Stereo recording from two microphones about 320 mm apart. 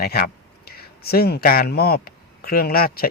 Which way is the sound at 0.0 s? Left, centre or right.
Left.